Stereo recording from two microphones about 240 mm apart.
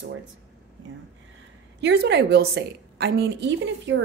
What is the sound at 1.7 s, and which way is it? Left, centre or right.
Speech, right.